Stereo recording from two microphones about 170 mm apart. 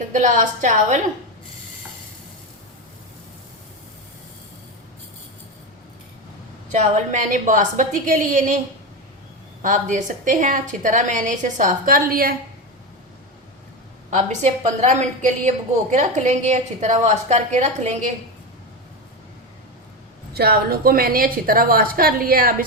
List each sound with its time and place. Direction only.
0.1 s a woman's voice: 45° right (ahead or behind)
6.7 s a woman's voice: 45° right (ahead or behind); by 12.4 s 60° right (ahead or behind)
14.1 s a woman's voice: 45° right (ahead or behind)
20.3 s a woman's voice: 65° right (ahead or behind)